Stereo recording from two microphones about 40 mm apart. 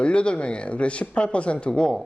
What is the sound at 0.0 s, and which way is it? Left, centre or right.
A man's voice, left.